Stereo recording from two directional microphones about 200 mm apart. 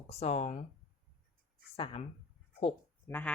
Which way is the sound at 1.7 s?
25° left (ahead or behind).